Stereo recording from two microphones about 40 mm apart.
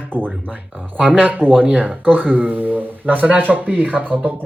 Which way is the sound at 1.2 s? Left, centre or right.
Right.